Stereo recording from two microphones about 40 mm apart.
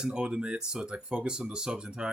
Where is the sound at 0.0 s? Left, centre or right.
Centre.